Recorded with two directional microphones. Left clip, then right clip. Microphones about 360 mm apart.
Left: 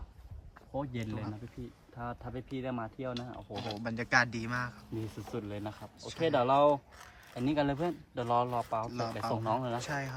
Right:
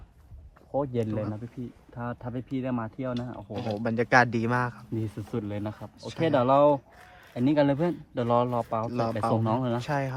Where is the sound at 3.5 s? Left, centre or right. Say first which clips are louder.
Right 7 dB; left.